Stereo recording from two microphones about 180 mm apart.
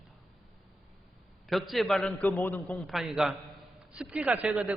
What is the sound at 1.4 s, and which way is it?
A man's voice, centre (ahead or behind).